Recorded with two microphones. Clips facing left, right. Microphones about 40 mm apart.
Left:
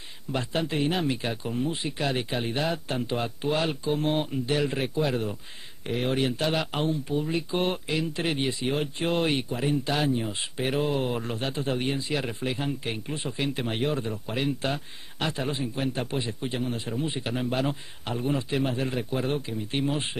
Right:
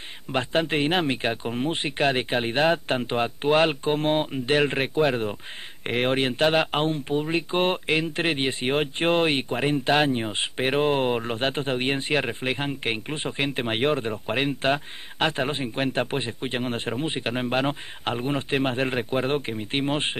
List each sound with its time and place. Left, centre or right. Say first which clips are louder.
0.3 s speech: right 5 dB; right